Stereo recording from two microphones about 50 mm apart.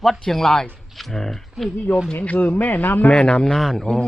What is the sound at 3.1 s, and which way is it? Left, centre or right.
Speech, centre.